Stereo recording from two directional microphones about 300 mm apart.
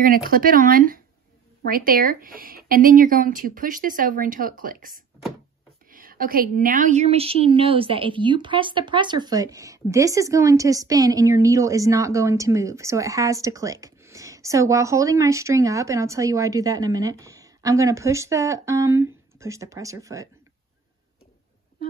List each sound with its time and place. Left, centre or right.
0.0 s a woman's voice: right; by 20.2 s centre